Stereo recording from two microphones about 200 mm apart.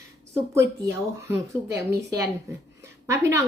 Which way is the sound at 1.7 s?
15° right (ahead or behind).